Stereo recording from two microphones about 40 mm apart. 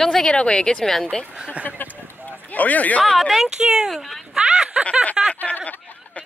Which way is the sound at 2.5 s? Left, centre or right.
Left.